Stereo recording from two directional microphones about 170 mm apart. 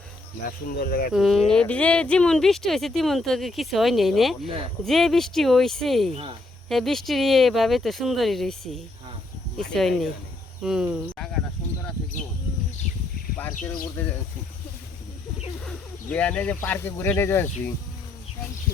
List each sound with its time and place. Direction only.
0.4 s speech: 60° left (ahead or behind)
1.1 s speech: centre (ahead or behind)
14.0 s speech: 10° left (ahead or behind)
15.6 s speech: 5° left (ahead or behind)